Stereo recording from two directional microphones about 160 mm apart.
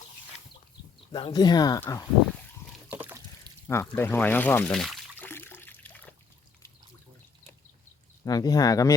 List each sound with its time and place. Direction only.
1.1 s speech: 30° left (ahead or behind)
2.9 s liquid: 10° right (ahead or behind)
3.7 s speech: 15° left (ahead or behind)
5.3 s water: 15° left (ahead or behind)
8.2 s speech: 20° left (ahead or behind)